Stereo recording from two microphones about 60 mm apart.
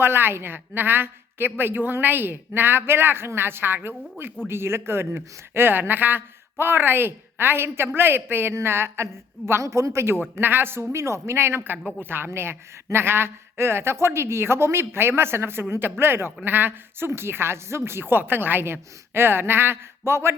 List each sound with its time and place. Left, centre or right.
0.0 s a woman's voice: right
9.5 s a woman's voice: right
10.4 s speech: right
10.9 s a woman's voice: right